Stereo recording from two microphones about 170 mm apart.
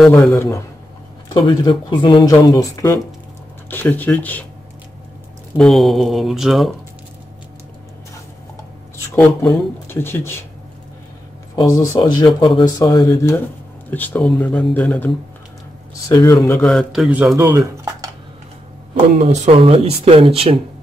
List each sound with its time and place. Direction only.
0.1 s speech: 15° left (ahead or behind)
1.3 s speech: 25° left (ahead or behind); by 4.5 s 10° left (ahead or behind)
5.6 s speech: centre (ahead or behind)
8.9 s speech: 15° left (ahead or behind)
11.5 s speech: 20° left (ahead or behind)
16.6 s speech: centre (ahead or behind)
17.4 s speech: 20° right (ahead or behind)
19.1 s speech: 35° right (ahead or behind)